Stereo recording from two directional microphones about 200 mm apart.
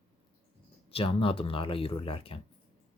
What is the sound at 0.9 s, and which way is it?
Speech, 25° left (ahead or behind).